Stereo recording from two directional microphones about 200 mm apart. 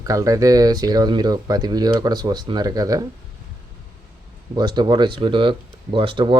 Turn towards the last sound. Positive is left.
turn(degrees=-25)  # may be behind; listen again after turning